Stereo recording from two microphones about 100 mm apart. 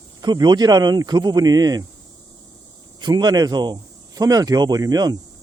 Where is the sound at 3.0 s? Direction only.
45° right (ahead or behind).